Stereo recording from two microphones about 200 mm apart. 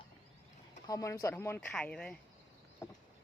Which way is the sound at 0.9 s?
15° left (ahead or behind).